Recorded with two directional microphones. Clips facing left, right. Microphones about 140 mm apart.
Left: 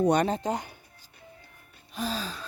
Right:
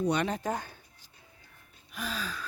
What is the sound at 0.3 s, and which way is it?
Speech, 25° left (ahead or behind).